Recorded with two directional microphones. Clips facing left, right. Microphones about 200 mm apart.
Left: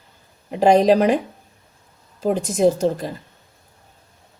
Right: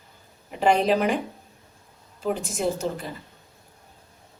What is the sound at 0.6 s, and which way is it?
Speech, 40° left (ahead or behind).